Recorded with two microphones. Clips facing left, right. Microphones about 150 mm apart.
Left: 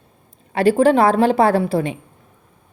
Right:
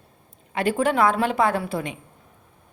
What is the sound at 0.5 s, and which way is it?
A woman's voice, 35° left (ahead or behind).